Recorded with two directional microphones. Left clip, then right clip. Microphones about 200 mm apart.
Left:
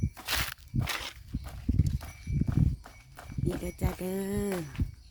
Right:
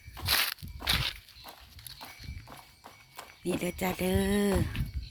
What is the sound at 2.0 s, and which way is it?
Horse, 15° left (ahead or behind).